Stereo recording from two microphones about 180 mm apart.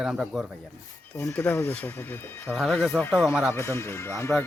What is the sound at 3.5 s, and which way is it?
Speech, 15° left (ahead or behind).